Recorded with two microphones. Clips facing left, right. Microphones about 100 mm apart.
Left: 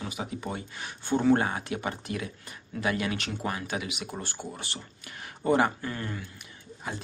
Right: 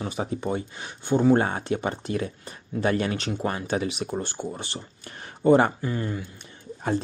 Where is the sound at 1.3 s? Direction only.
30° right (ahead or behind).